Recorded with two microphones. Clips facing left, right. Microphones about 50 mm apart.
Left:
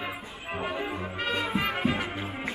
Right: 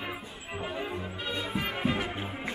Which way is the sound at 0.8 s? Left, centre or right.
Left.